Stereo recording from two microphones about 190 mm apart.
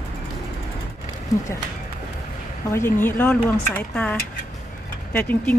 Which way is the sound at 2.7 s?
15° left (ahead or behind).